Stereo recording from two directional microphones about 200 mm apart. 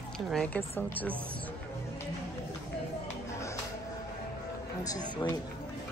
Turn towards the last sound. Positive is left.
turn(degrees=20)  # may be behind; listen again after turning